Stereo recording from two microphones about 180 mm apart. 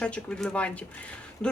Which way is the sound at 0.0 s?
5° left (ahead or behind).